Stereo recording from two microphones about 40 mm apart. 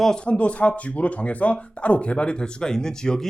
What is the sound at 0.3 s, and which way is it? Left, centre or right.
Speech, left.